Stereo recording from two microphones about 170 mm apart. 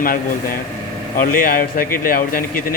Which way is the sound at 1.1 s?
55° left (ahead or behind).